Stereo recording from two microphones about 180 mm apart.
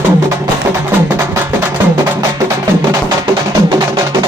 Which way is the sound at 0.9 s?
15° right (ahead or behind).